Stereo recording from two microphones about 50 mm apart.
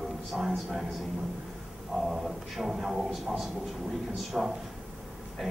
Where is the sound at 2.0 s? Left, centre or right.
Centre.